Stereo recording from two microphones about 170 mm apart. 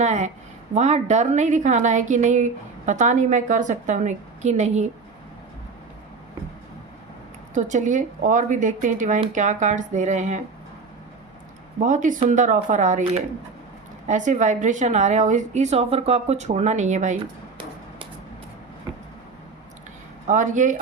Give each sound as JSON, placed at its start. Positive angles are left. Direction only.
{"t": 0.0, "sound": "a sound", "side_deg": -45}
{"t": 0.7, "sound": "a woman's voice", "side_deg": -45}
{"t": 7.5, "sound": "a woman's voice", "side_deg": -45}
{"t": 11.8, "sound": "a woman's voice", "side_deg": -50}
{"t": 18.9, "sound": "vehicle", "side_deg": -25}
{"t": 20.2, "sound": "a woman's voice", "side_deg": -50}